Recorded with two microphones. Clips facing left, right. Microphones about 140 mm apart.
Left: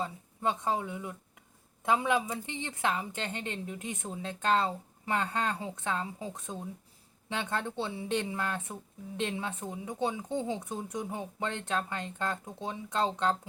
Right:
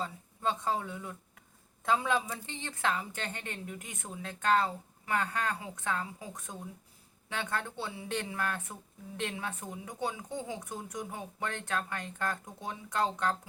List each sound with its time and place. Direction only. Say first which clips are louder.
0.0 s a woman's voice: left 2 dB; 20° left (ahead or behind)